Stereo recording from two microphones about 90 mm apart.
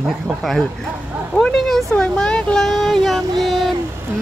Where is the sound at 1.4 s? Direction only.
5° left (ahead or behind).